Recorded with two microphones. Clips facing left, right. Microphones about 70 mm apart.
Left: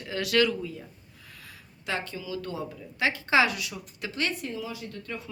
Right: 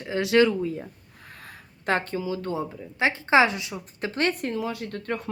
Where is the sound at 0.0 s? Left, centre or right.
Right.